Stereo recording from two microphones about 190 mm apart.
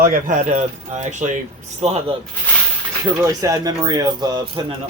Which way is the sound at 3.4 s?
20° right (ahead or behind).